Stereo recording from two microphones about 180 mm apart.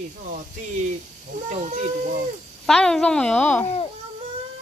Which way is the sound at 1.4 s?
40° right (ahead or behind).